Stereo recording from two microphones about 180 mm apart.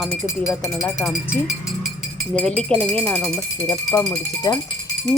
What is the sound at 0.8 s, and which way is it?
A woman's voice, centre (ahead or behind).